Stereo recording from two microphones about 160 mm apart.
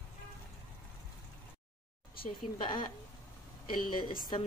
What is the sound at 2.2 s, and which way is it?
Speech, 30° left (ahead or behind).